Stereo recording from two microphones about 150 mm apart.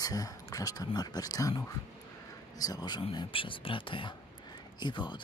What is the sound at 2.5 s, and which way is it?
Speech, 25° left (ahead or behind).